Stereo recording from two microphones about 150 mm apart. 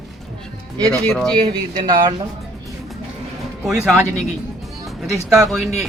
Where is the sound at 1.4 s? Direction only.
30° right (ahead or behind).